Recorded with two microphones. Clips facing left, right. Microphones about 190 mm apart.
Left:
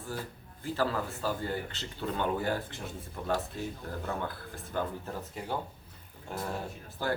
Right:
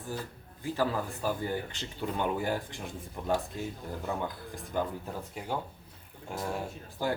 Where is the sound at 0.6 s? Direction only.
15° right (ahead or behind).